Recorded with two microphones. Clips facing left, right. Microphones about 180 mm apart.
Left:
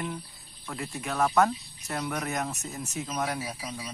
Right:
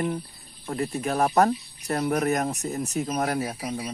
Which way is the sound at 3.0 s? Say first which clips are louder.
Right 5 dB; 60° right (ahead or behind).